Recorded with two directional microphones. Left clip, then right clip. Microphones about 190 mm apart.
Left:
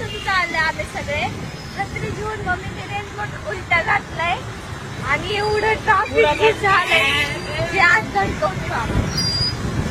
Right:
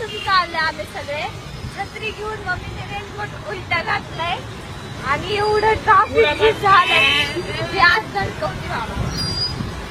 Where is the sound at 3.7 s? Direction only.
Centre (ahead or behind).